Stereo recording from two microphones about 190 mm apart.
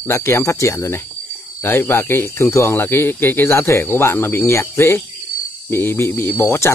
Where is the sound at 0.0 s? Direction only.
15° left (ahead or behind).